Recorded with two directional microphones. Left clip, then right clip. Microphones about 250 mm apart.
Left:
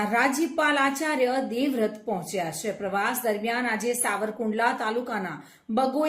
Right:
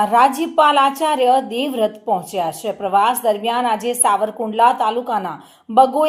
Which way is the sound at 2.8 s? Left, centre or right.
Right.